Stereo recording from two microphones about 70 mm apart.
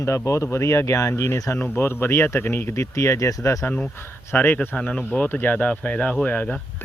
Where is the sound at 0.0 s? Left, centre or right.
Left.